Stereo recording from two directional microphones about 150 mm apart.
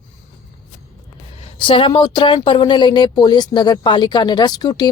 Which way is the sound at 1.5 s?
35° left (ahead or behind).